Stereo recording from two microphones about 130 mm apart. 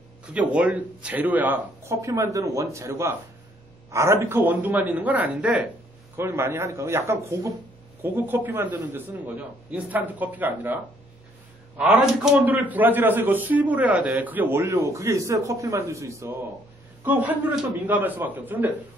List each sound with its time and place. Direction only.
0.2 s a man's voice: 10° right (ahead or behind)
11.8 s a man's voice: 10° right (ahead or behind)